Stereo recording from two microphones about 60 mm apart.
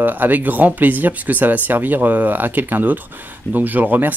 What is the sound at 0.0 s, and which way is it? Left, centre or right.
Speech, right.